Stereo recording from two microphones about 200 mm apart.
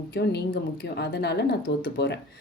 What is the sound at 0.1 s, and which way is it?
Speech, 55° left (ahead or behind).